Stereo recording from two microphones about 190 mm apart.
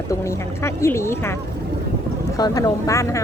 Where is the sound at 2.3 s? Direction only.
20° left (ahead or behind).